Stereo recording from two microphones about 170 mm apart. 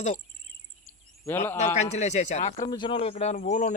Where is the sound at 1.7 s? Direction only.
40° left (ahead or behind).